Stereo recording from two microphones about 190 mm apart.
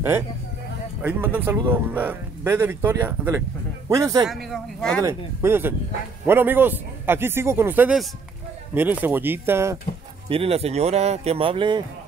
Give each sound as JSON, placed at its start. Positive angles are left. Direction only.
{"t": 1.0, "sound": "speech", "side_deg": -10}
{"t": 4.3, "sound": "speech", "side_deg": 0}
{"t": 5.0, "sound": "speech", "side_deg": -10}
{"t": 10.3, "sound": "speech", "side_deg": -30}